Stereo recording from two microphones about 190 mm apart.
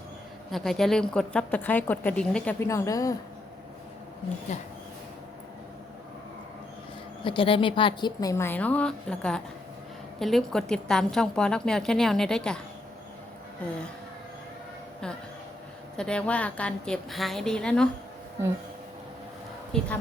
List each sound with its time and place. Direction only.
0.5 s a woman's voice: centre (ahead or behind); by 3.2 s 15° left (ahead or behind)
4.5 s speech: 40° left (ahead or behind)
7.3 s a woman's voice: 25° left (ahead or behind); by 12.5 s 5° left (ahead or behind)
16.0 s a woman's voice: 5° left (ahead or behind)
19.7 s a woman's voice: 5° left (ahead or behind)